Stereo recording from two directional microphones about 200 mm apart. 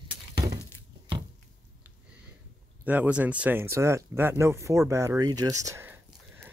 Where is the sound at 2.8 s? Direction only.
10° right (ahead or behind).